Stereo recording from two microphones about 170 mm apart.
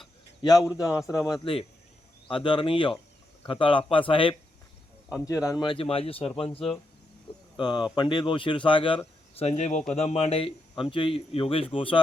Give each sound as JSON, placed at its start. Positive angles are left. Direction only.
{"t": 0.8, "sound": "a man's voice", "side_deg": 20}
{"t": 5.2, "sound": "a man's voice", "side_deg": 20}